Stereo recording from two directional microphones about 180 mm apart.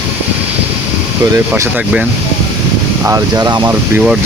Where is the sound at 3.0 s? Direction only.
20° right (ahead or behind).